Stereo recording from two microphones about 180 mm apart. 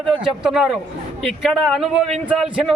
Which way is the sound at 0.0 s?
Centre (ahead or behind).